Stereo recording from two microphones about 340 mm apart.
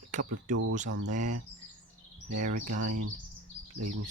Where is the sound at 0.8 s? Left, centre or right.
Right.